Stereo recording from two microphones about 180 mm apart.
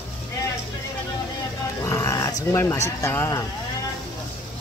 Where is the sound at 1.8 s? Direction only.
15° left (ahead or behind).